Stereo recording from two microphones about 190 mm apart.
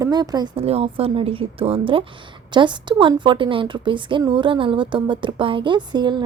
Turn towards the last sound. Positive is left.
turn(degrees=-25)  # may be behind; listen again after turning